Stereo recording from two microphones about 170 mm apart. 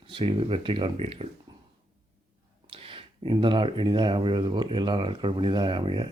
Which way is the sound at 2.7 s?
30° right (ahead or behind).